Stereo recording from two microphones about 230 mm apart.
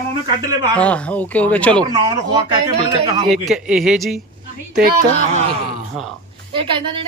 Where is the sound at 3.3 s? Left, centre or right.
Centre.